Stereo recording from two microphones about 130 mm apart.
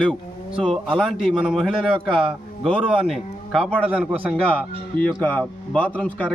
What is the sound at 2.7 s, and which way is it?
Speech, 40° right (ahead or behind).